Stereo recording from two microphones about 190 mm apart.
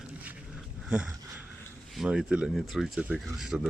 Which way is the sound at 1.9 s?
5° right (ahead or behind).